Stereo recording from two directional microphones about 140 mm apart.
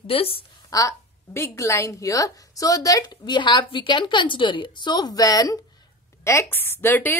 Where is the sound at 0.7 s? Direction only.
20° left (ahead or behind).